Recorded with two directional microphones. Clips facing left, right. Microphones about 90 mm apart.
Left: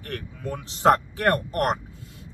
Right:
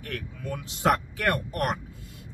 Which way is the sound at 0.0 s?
30° left (ahead or behind).